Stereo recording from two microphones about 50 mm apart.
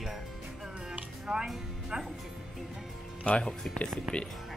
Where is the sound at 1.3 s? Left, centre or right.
Centre.